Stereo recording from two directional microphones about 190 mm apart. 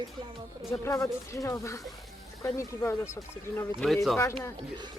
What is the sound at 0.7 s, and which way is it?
Speech, 15° left (ahead or behind).